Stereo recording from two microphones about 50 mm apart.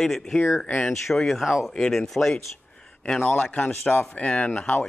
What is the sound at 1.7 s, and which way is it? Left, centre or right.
Speech, centre.